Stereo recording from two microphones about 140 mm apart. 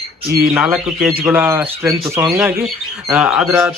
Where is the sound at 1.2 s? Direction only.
15° right (ahead or behind).